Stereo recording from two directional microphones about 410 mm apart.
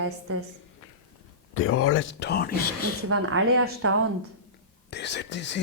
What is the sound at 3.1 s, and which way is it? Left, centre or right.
Speech, right.